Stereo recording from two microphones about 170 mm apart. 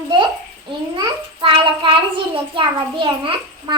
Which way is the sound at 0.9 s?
30° right (ahead or behind).